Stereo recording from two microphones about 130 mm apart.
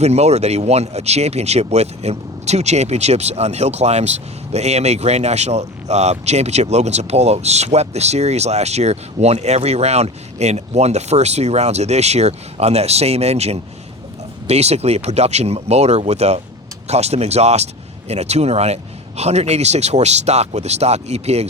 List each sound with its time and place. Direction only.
0.0 s speech: 55° right (ahead or behind)